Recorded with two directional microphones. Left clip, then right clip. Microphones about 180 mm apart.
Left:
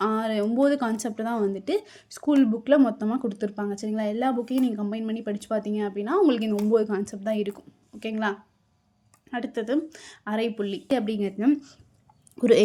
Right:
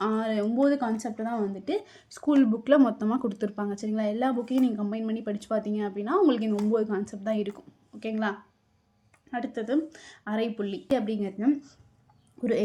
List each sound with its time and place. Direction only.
0.0 s speech: 20° left (ahead or behind); by 12.6 s 40° left (ahead or behind)